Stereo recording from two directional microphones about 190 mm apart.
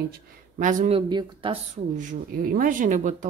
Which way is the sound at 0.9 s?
25° right (ahead or behind).